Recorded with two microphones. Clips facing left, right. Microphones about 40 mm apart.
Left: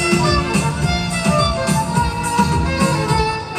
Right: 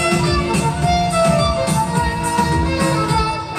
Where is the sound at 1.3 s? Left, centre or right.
Right.